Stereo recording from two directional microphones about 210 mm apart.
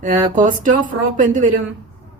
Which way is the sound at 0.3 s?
40° right (ahead or behind).